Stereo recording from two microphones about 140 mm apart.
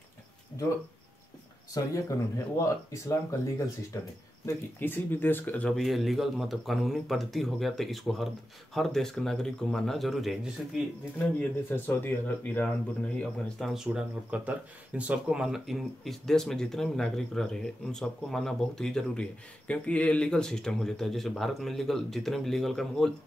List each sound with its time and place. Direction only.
1.7 s speech: 25° left (ahead or behind); by 10.5 s centre (ahead or behind)
11.7 s speech: 15° left (ahead or behind)
13.8 s speech: 10° right (ahead or behind)